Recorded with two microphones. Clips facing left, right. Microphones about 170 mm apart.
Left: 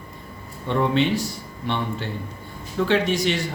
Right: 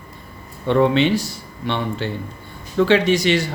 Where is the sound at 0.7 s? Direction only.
85° right.